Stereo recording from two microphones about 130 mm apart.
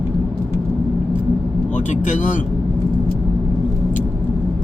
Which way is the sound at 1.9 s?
70° left (ahead or behind).